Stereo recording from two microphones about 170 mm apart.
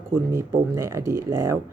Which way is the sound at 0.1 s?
15° right (ahead or behind).